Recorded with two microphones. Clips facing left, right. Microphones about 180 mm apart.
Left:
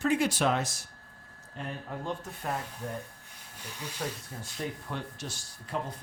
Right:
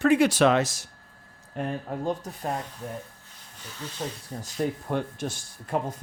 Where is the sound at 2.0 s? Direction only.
40° right (ahead or behind).